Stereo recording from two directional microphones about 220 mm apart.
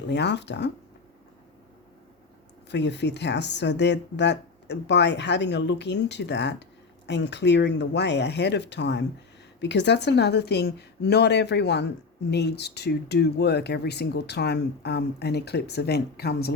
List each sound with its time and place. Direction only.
0.1 s a woman's voice: 50° left (ahead or behind)
2.6 s a woman's voice: 50° left (ahead or behind)